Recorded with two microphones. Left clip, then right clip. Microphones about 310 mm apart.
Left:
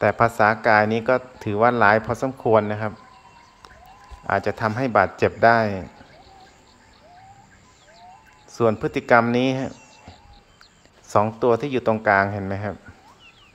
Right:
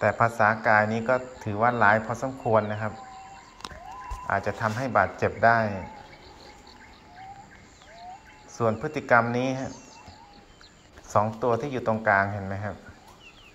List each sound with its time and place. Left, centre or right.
0.0 s speech: centre
2.0 s speech: left
4.3 s speech: centre
8.5 s speech: left
9.1 s speech: centre
11.1 s speech: left